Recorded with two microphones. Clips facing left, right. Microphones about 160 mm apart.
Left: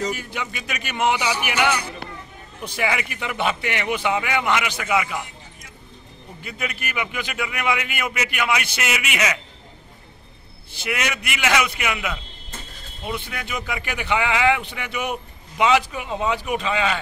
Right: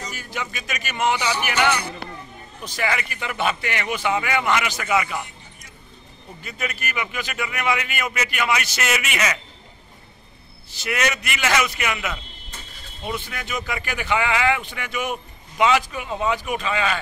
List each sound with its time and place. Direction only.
0.2 s a man's voice: 15° left (ahead or behind)
2.8 s a man's voice: 10° left (ahead or behind)
6.4 s a man's voice: 15° left (ahead or behind)
10.9 s a man's voice: 10° left (ahead or behind)
13.3 s a man's voice: 10° left (ahead or behind)